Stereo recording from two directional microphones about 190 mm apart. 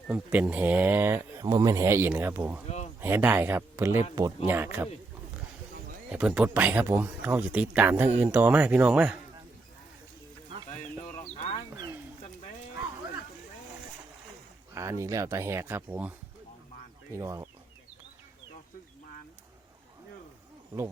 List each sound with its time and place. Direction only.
0.1 s speech: 10° right (ahead or behind)
2.6 s speech: 35° left (ahead or behind)
3.0 s speech: 10° right (ahead or behind)
6.1 s speech: 5° right (ahead or behind)
11.3 s a sound: 35° left (ahead or behind)
14.8 s speech: 15° right (ahead or behind)